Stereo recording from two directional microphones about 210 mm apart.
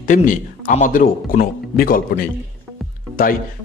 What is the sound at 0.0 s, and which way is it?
A man's voice, 40° left (ahead or behind).